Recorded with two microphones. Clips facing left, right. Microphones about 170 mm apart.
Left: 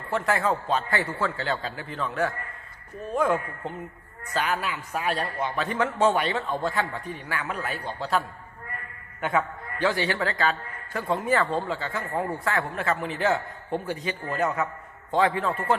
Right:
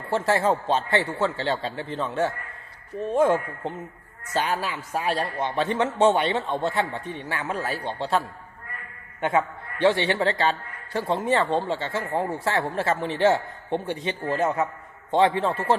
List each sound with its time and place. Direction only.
0.1 s a man's voice: 30° right (ahead or behind)
4.4 s a man's voice: 30° right (ahead or behind)
9.8 s a man's voice: 25° right (ahead or behind)